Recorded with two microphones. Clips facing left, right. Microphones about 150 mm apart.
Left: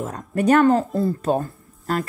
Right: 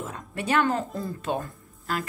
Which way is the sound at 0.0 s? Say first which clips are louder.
Left 11 dB; 40° left (ahead or behind).